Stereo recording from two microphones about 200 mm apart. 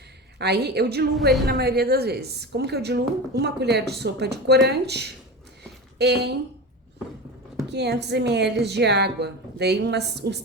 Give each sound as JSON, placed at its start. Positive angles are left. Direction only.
{"t": 0.3, "sound": "a woman's voice", "side_deg": -55}
{"t": 7.7, "sound": "a woman's voice", "side_deg": -55}